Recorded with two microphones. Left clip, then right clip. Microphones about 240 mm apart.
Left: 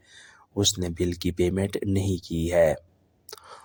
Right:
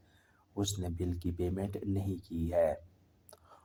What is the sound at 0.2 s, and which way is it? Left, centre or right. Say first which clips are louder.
Speech: left 11 dB; left.